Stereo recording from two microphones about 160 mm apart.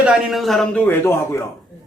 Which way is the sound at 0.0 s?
Centre (ahead or behind).